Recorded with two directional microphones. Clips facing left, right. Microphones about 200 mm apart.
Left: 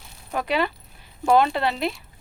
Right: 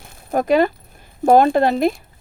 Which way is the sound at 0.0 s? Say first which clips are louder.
Right 8 dB; 50° right (ahead or behind).